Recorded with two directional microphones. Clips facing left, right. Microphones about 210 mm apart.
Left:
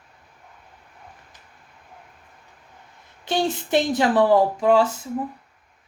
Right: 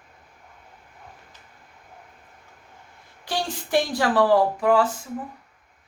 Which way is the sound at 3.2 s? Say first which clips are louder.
Left 6 dB; 20° left (ahead or behind).